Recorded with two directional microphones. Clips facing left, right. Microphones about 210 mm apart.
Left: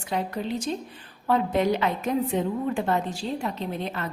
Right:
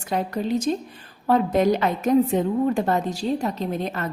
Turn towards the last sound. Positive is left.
turn(degrees=-40)  # may be behind; listen again after turning